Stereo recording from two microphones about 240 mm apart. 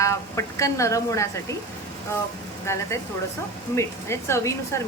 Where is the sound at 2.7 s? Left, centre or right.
Centre.